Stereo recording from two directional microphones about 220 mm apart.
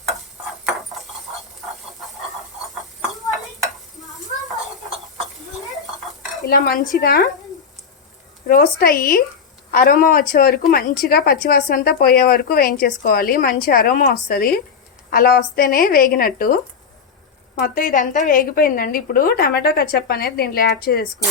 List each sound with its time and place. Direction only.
3.3 s stir: centre (ahead or behind)
6.5 s a woman's voice: 40° left (ahead or behind)
8.4 s a woman's voice: 40° left (ahead or behind)